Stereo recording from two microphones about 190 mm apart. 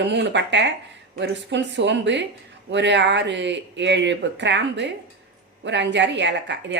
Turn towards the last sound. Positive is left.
turn(degrees=-70)  # may be behind; listen again after turning